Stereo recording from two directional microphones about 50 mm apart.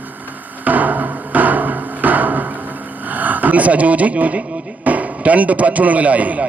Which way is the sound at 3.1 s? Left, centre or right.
Right.